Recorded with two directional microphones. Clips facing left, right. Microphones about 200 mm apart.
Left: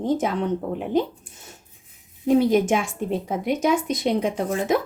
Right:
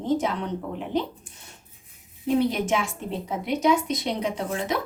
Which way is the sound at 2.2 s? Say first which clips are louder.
Left 5 dB; 45° left (ahead or behind).